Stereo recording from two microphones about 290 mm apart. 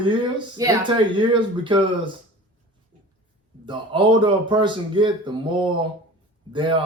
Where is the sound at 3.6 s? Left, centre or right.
Centre.